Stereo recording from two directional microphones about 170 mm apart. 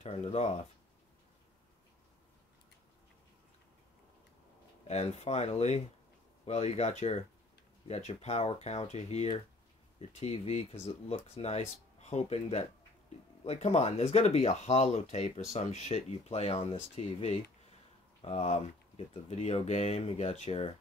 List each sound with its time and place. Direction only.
0.0 s speech: 35° left (ahead or behind)
4.8 s speech: 40° left (ahead or behind)